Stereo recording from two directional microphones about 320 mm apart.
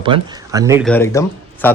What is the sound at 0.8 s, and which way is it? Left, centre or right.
Speech, centre.